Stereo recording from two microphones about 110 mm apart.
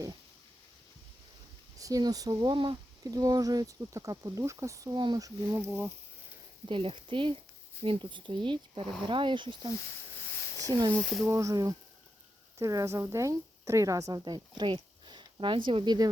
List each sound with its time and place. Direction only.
1.8 s speech: 35° right (ahead or behind)
5.5 s a woman's voice: 20° right (ahead or behind)
6.7 s speech: 55° right (ahead or behind); by 10.8 s 35° right (ahead or behind)
10.9 s speech: 5° left (ahead or behind)
11.3 s a woman's voice: 30° right (ahead or behind)